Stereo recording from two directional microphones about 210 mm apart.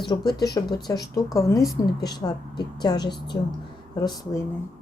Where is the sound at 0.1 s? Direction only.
20° left (ahead or behind).